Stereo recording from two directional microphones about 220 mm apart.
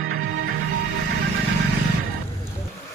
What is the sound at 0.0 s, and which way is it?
Music, 65° right (ahead or behind).